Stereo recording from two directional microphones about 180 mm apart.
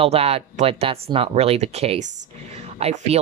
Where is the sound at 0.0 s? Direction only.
35° right (ahead or behind).